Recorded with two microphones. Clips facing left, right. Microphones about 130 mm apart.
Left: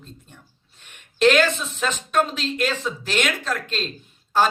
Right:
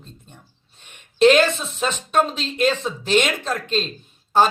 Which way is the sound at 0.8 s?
15° right (ahead or behind).